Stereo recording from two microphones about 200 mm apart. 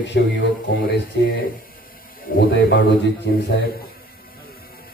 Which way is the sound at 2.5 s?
75° left (ahead or behind).